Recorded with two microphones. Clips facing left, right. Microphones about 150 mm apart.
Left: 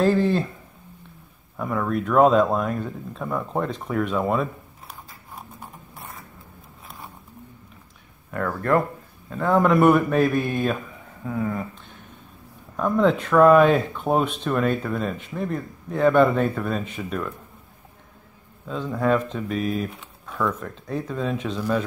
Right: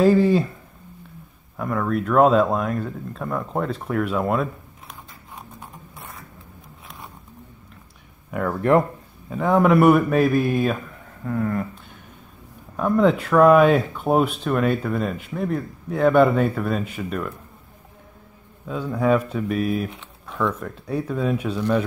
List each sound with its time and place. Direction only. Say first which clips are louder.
0.0 s speech: right 3 dB; 5° right (ahead or behind)
1.6 s speech: right 1 dB; centre (ahead or behind)
8.3 s speech: right 3 dB; 15° right (ahead or behind)
9.3 s speech: right 2 dB; 10° right (ahead or behind)
12.7 s speech: right 2 dB; 5° right (ahead or behind)
18.7 s speech: right 2 dB; 5° right (ahead or behind)